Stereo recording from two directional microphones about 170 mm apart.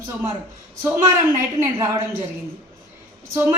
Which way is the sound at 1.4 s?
15° right (ahead or behind).